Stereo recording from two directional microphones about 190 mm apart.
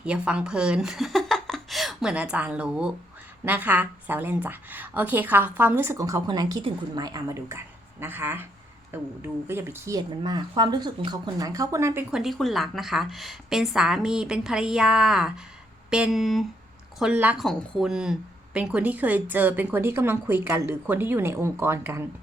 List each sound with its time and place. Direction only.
0.0 s a woman's voice: 5° right (ahead or behind)
12.1 s a woman's voice: centre (ahead or behind)